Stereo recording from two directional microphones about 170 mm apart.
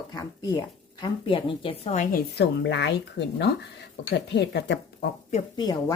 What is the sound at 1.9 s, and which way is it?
Speech, 45° left (ahead or behind).